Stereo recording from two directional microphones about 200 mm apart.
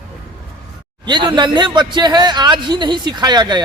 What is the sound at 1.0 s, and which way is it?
A man's voice, 20° right (ahead or behind).